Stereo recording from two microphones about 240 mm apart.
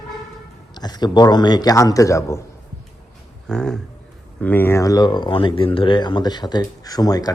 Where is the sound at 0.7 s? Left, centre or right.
Centre.